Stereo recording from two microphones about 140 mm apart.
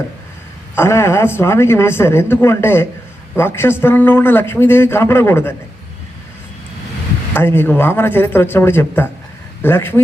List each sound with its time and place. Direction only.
0.8 s a man's voice: 20° left (ahead or behind)
7.3 s a man's voice: 15° left (ahead or behind)